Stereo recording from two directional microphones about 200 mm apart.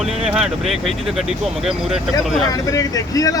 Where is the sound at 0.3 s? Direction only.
5° right (ahead or behind).